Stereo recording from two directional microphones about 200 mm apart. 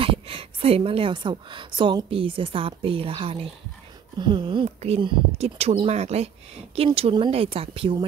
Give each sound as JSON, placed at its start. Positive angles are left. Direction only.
{"t": 0.0, "sound": "speech", "side_deg": -25}